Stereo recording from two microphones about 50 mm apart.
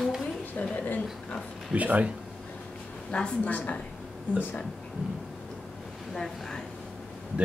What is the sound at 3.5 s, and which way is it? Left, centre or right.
Speech, left.